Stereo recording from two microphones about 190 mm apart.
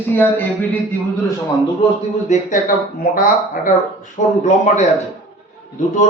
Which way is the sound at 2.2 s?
40° left (ahead or behind).